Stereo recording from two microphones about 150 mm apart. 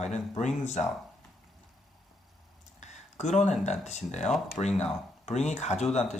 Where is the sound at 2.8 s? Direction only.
50° left (ahead or behind).